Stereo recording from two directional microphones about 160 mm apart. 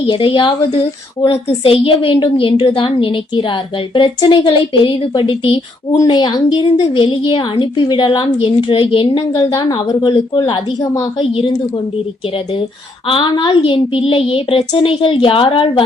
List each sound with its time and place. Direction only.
0.1 s a woman's voice: 30° left (ahead or behind)
13.1 s a woman's voice: 30° left (ahead or behind)